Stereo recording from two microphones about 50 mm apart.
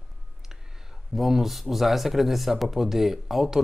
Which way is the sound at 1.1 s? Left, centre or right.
Centre.